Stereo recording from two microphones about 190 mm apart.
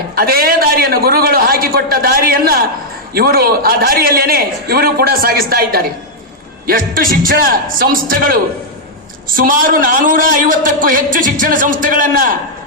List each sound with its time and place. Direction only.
0.2 s a man's voice: 50° right (ahead or behind)